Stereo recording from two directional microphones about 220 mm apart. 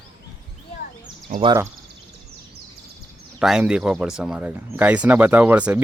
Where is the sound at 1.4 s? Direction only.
20° right (ahead or behind).